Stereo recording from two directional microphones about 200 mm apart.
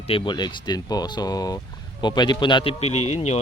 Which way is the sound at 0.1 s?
20° left (ahead or behind).